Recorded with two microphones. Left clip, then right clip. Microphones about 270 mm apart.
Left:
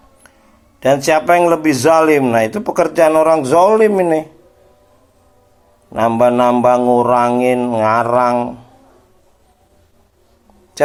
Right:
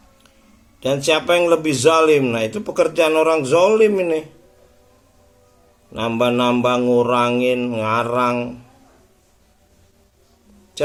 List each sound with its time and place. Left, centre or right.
1.1 s speech: centre
1.7 s speech: centre
2.0 s speech: centre
2.3 s speech: centre
5.9 s speech: centre